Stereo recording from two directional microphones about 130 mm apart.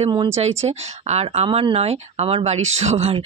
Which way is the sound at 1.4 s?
45° right (ahead or behind).